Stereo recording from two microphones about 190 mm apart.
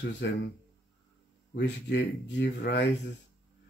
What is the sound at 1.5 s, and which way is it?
Speech, 65° left (ahead or behind).